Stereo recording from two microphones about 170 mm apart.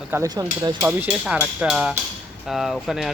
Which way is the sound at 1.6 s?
5° right (ahead or behind).